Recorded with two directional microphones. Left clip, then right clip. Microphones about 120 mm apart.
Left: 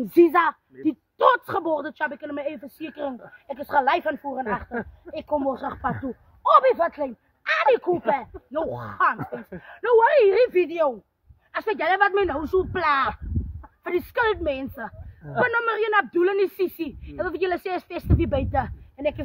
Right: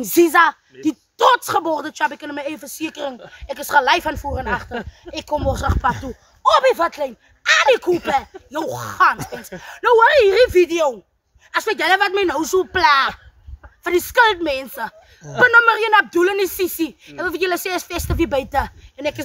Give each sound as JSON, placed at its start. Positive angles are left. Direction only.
{"t": 0.0, "sound": "a man's voice", "side_deg": -30}